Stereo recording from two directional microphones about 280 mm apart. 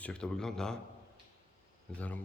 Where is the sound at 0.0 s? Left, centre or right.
Centre.